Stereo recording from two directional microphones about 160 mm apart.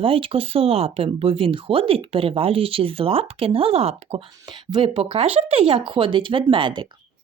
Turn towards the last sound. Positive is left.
turn(degrees=-30)  # may be behind; listen again after turning